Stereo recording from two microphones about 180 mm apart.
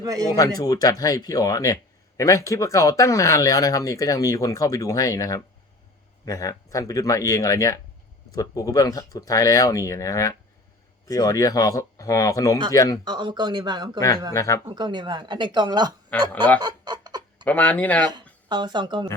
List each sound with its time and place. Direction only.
0.0 s speech: 20° right (ahead or behind)
0.3 s speech: 20° left (ahead or behind)
13.1 s speech: 25° right (ahead or behind)
14.3 s speech: 15° left (ahead or behind)
14.7 s speech: 25° right (ahead or behind)
16.3 s speech: 10° left (ahead or behind)
16.6 s a sound: 25° right (ahead or behind)
17.4 s speech: 10° left (ahead or behind)
18.4 s speech: 25° right (ahead or behind)